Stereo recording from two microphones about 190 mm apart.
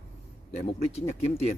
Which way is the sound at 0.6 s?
35° left (ahead or behind).